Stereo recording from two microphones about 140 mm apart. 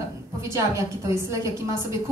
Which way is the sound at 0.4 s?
20° right (ahead or behind).